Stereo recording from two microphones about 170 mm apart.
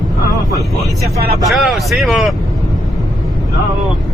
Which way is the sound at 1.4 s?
Centre (ahead or behind).